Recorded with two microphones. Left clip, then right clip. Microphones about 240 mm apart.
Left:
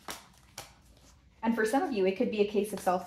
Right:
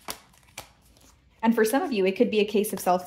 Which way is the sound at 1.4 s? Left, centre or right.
Right.